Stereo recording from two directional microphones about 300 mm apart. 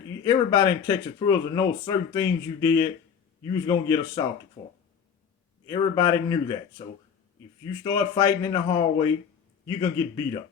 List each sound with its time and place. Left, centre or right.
0.3 s speech: centre
4.6 s speech: left